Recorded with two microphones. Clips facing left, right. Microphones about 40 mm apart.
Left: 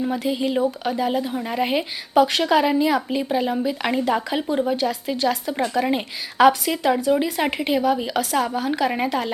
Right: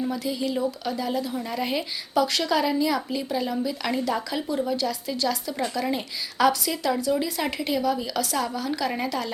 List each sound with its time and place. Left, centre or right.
0.1 s speech: left